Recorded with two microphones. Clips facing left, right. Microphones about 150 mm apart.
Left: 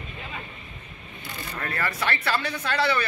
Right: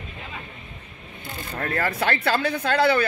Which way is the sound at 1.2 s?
50° right (ahead or behind).